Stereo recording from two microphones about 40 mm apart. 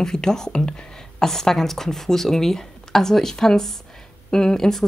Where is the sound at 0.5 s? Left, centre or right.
Left.